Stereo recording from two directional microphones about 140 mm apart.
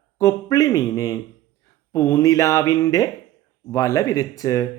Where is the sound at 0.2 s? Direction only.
25° left (ahead or behind).